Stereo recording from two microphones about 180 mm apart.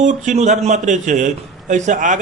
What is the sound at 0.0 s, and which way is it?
A man's voice, 45° right (ahead or behind).